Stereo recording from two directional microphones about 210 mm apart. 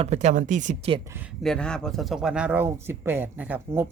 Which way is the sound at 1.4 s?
5° left (ahead or behind).